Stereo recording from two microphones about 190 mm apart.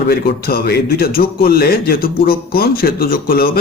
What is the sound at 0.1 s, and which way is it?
Speech, 55° left (ahead or behind).